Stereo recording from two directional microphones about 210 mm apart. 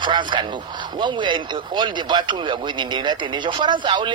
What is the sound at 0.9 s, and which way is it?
Speech, 20° right (ahead or behind).